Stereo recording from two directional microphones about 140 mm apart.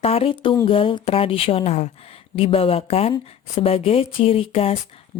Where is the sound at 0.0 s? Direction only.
45° left (ahead or behind).